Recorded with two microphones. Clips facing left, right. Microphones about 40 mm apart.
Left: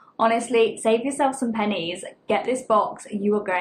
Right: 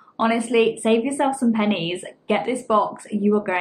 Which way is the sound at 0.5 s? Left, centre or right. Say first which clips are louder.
Right 1 dB; right.